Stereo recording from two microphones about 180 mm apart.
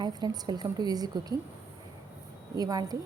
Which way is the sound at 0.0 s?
20° right (ahead or behind).